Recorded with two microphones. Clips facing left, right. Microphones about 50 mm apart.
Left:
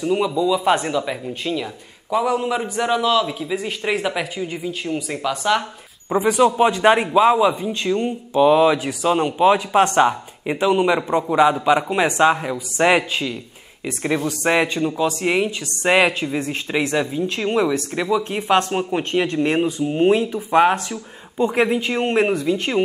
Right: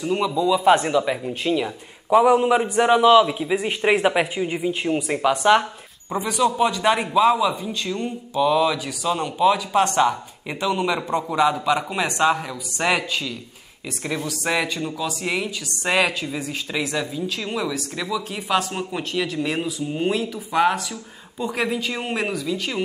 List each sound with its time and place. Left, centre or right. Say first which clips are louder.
0.0 s a man's voice: left 2 dB; centre
6.0 s a man's voice: left 5 dB; left
19.9 s speech: left 7 dB; centre
20.3 s a man's voice: left 4 dB; left